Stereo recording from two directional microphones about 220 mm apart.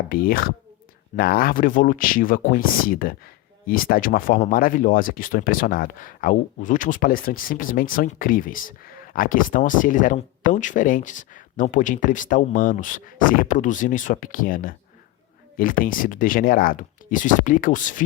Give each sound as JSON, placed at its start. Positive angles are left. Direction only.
{"t": 0.1, "sound": "speech", "side_deg": 40}